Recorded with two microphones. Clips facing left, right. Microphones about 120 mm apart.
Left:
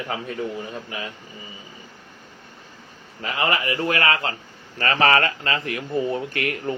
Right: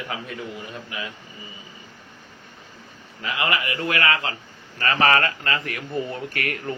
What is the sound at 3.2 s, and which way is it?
A man's voice, 35° left (ahead or behind).